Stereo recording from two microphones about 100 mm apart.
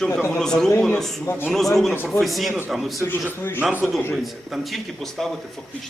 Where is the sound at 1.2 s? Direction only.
20° left (ahead or behind).